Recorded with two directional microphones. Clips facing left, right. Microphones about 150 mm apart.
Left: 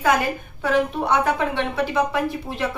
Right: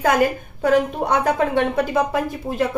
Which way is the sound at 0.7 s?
45° right (ahead or behind).